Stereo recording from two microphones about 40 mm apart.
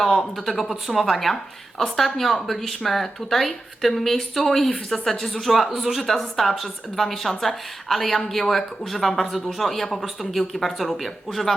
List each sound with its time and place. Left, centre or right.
0.4 s speech: centre
5.4 s speech: centre